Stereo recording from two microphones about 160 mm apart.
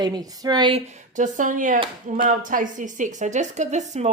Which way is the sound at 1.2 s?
55° right (ahead or behind).